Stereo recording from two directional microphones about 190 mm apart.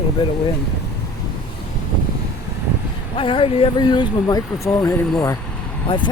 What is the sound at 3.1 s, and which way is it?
Speech, 30° left (ahead or behind).